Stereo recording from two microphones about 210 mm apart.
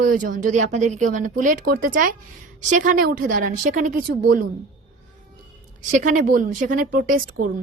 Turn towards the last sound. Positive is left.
turn(degrees=-40)  # may be behind; listen again after turning